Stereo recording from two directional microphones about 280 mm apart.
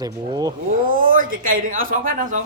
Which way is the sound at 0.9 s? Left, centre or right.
Right.